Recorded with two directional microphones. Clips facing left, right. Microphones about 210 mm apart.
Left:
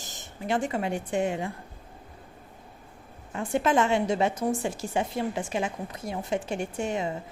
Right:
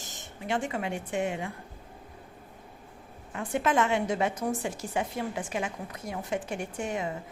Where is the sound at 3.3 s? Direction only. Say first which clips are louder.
Left 3 dB; 30° left (ahead or behind).